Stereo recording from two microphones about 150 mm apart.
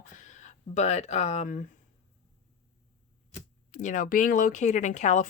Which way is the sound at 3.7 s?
60° left (ahead or behind).